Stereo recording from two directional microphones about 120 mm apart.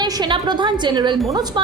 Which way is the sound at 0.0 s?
35° right (ahead or behind).